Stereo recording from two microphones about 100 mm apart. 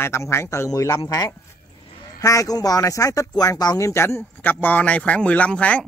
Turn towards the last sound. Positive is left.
turn(degrees=15)  # may be behind; listen again after turning